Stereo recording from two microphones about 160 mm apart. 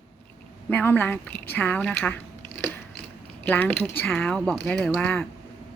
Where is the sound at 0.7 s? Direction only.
10° left (ahead or behind).